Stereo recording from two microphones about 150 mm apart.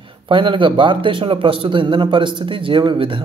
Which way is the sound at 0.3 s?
35° right (ahead or behind).